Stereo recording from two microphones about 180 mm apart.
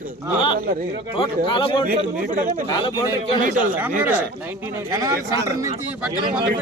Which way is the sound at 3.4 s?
50° right (ahead or behind).